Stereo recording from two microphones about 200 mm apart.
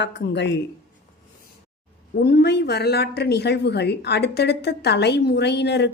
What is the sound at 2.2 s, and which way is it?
Speech, 55° left (ahead or behind).